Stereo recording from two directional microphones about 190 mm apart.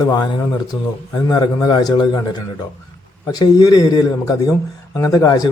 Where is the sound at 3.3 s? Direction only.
20° left (ahead or behind).